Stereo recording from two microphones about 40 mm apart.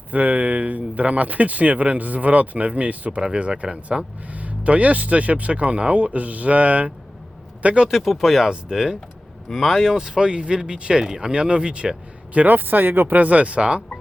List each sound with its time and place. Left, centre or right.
0.1 s speech: right
3.2 s speech: right
7.8 s speech: centre
8.4 s speech: centre
9.5 s speech: centre
9.8 s speech: centre; by 12.5 s right
12.5 s speech: right
13.2 s speech: right